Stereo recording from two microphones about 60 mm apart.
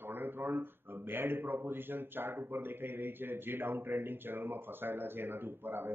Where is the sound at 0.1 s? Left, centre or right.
Right.